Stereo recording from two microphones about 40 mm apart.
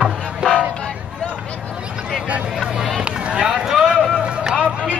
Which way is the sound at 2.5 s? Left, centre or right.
Centre.